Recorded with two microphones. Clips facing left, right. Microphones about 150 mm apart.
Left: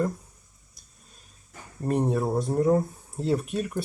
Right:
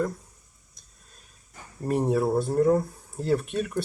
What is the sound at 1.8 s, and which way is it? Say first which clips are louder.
Speech: right 1 dB; 5° right (ahead or behind).